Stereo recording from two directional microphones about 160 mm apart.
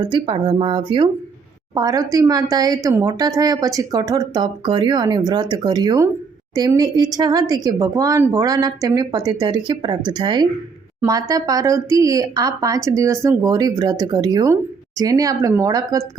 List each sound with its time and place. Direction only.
0.0 s speech: 30° right (ahead or behind)